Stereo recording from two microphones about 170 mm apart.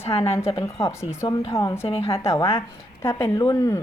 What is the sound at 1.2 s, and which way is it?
Speech, 30° left (ahead or behind).